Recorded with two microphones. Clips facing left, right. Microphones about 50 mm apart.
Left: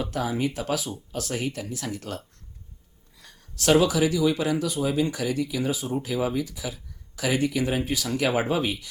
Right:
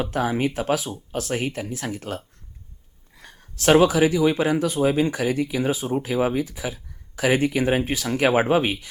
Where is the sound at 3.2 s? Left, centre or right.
Right.